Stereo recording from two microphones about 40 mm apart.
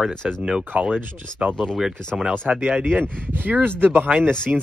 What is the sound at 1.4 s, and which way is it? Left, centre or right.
Speech, centre.